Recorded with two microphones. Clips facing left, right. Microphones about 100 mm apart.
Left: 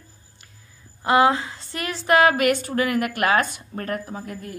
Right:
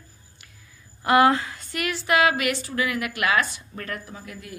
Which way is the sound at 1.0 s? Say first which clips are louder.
Even; 20° left (ahead or behind).